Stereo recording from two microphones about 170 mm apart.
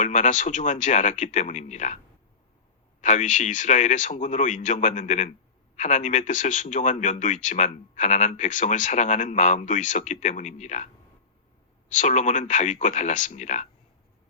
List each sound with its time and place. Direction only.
0.0 s a man's voice: 45° left (ahead or behind)
3.0 s a man's voice: 45° left (ahead or behind)
11.9 s a man's voice: 45° left (ahead or behind)